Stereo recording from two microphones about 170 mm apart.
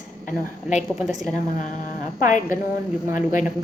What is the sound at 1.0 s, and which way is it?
Speech, centre (ahead or behind).